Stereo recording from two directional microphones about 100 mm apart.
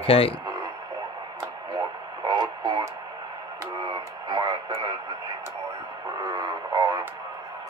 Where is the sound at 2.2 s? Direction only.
45° right (ahead or behind).